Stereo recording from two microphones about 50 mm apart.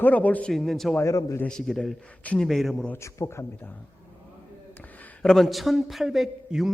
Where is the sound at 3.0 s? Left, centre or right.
Left.